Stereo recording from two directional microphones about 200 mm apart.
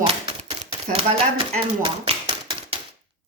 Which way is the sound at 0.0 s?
25° right (ahead or behind).